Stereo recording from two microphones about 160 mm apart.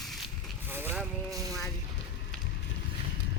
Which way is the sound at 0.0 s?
Centre (ahead or behind).